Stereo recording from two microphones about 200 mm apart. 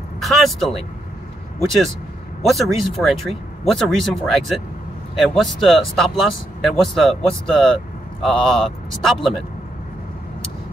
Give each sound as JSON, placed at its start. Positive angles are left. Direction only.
{"t": 0.2, "sound": "speech", "side_deg": 0}
{"t": 2.5, "sound": "speech", "side_deg": 0}